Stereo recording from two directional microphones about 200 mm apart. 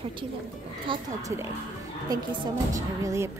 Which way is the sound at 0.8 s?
15° right (ahead or behind).